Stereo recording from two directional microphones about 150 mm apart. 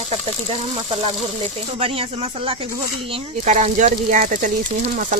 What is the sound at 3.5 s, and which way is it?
Speech, 55° right (ahead or behind).